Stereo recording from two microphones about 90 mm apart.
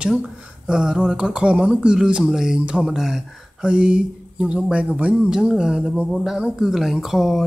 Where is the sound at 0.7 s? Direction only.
10° right (ahead or behind).